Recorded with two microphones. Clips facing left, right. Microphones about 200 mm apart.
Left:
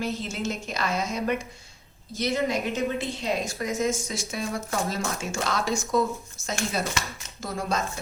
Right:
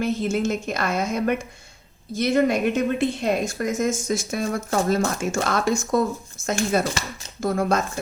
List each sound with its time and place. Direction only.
0.0 s a woman's voice: 50° right (ahead or behind)